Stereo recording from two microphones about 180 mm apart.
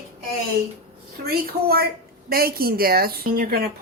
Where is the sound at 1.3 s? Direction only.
60° right (ahead or behind).